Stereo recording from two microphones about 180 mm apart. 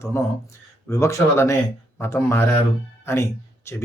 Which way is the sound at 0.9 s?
15° left (ahead or behind).